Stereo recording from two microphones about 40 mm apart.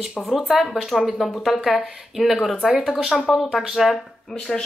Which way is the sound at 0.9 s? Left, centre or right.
Left.